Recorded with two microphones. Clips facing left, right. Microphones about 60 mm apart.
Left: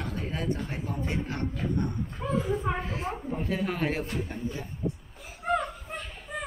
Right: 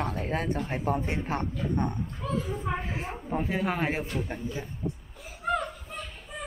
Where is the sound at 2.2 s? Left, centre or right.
Left.